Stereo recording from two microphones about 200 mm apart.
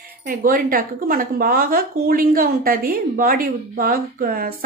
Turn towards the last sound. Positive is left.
turn(degrees=-45)  # may be behind; listen again after turning